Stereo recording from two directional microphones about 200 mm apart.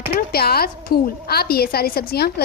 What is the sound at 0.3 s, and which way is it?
A woman's voice, 50° left (ahead or behind).